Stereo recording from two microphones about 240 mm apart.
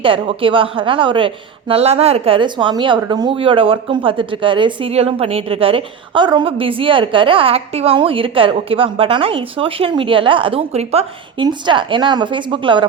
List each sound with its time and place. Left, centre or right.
0.0 s a woman's voice: right